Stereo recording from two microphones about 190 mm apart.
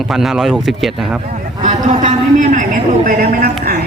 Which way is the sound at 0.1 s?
Centre (ahead or behind).